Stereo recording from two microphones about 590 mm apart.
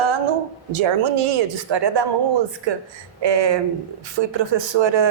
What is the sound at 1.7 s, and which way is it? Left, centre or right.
A woman's voice, right.